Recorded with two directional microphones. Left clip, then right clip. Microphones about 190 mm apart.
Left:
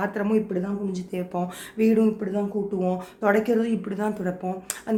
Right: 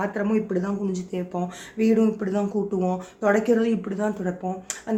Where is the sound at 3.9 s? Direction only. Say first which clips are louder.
Right 1 dB; 15° left (ahead or behind).